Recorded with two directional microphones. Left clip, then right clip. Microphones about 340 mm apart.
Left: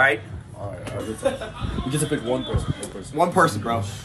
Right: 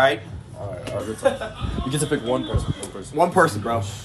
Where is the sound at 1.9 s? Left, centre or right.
Centre.